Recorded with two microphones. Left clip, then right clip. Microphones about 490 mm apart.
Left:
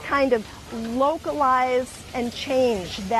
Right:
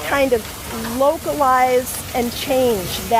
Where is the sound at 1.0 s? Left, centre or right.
Left.